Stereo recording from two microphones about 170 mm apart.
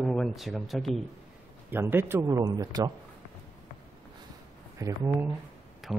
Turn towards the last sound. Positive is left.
turn(degrees=0)  # may be behind; listen again after turning